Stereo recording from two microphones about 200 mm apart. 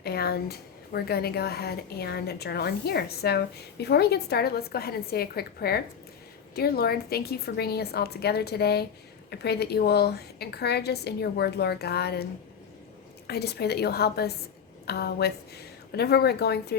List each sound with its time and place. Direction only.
0.0 s a woman's voice: 50° left (ahead or behind)